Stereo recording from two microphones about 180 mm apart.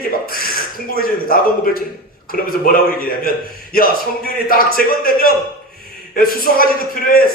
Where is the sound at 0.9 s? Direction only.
55° left (ahead or behind).